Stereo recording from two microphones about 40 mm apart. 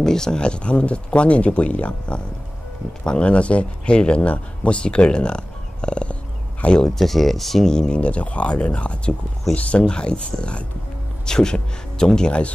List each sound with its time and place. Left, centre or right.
0.0 s speech: centre; by 6.8 s left
7.0 s speech: centre
7.7 s speech: centre
8.0 s speech: left; by 12.3 s centre
12.3 s speech: left